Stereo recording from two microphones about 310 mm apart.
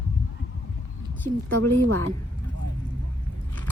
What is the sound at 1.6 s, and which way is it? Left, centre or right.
Speech, right.